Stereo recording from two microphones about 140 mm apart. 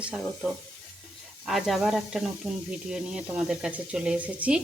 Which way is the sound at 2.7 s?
5° right (ahead or behind).